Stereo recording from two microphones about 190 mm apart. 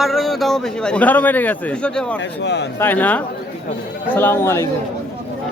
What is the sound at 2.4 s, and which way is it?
Speech, 65° left (ahead or behind).